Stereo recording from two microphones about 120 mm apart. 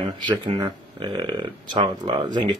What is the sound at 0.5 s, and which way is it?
Speech, 30° right (ahead or behind).